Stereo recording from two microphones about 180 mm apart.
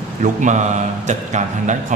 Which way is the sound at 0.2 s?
45° right (ahead or behind).